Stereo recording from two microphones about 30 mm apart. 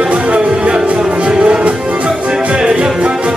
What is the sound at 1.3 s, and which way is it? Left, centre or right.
Music, right.